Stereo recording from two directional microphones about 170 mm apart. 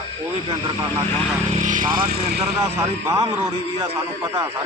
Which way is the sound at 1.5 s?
50° right (ahead or behind).